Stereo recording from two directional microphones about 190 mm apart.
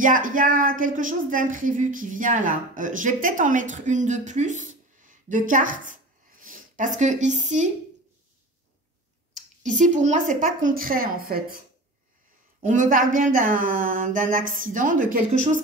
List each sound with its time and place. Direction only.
0.0 s speech: 45° right (ahead or behind)
9.6 s speech: 40° right (ahead or behind)
12.5 s speech: 40° right (ahead or behind)